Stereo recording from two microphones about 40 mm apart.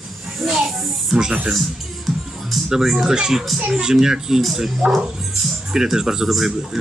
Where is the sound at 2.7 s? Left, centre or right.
Centre.